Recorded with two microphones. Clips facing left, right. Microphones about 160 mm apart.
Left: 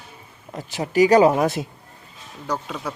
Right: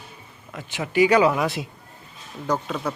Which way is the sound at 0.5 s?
40° left (ahead or behind).